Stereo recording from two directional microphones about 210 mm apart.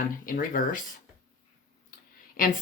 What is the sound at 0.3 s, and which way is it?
Speech, 40° left (ahead or behind).